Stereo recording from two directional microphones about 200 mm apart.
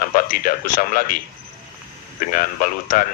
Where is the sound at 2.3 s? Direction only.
40° left (ahead or behind).